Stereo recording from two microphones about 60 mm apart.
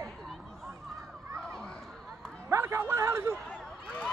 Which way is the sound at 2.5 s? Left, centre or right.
Right.